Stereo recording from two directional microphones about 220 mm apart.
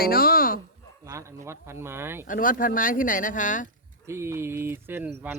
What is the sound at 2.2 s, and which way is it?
Speech, 40° left (ahead or behind).